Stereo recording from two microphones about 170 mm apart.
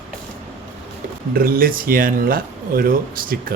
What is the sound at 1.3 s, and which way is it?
Speech, 60° right (ahead or behind).